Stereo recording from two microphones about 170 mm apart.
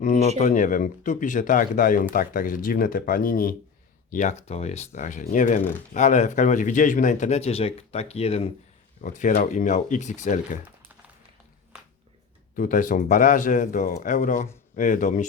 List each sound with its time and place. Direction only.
0.0 s speech: 45° left (ahead or behind)
4.1 s speech: 45° left (ahead or behind)
9.0 s speech: 50° left (ahead or behind)
12.5 s speech: 50° left (ahead or behind)